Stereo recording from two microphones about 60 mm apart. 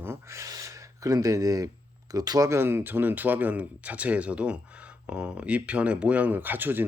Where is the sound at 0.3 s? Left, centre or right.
Right.